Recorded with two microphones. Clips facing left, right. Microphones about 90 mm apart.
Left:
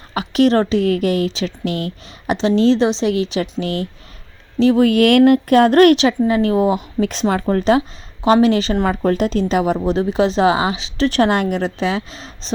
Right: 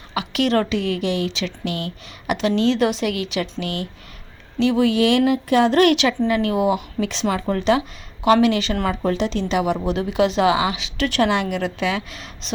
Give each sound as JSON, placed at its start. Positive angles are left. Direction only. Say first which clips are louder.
{"t": 0.1, "sound": "a woman's voice", "louder": "left 5 dB", "side_deg": 40}